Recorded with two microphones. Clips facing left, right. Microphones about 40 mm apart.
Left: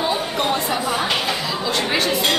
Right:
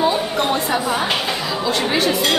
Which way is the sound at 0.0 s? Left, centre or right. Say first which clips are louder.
Right 3 dB; centre.